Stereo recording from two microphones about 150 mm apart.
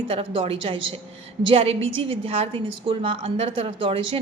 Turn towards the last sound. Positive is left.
turn(degrees=-35)  # may be behind; listen again after turning